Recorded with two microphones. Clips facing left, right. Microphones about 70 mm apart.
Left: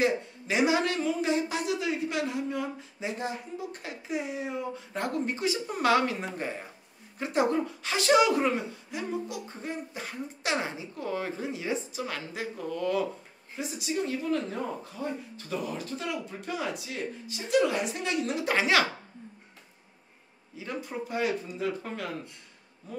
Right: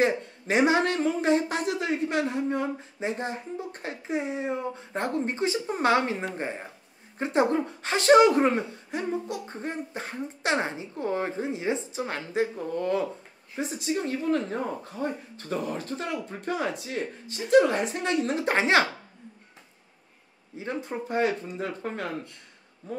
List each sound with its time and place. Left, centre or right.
0.0 s speech: right
20.5 s speech: right